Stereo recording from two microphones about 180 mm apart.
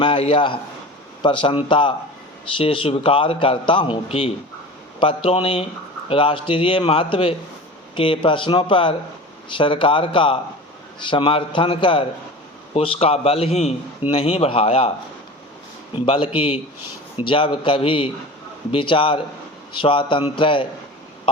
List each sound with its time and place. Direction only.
0.0 s a man's voice: 30° left (ahead or behind)
16.0 s a man's voice: 30° left (ahead or behind)